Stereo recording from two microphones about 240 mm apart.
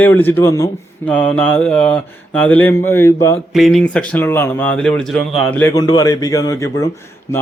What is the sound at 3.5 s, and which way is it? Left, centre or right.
Speech, centre.